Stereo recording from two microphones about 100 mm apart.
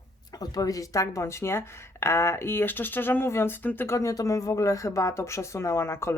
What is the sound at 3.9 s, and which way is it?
Speech, 35° left (ahead or behind).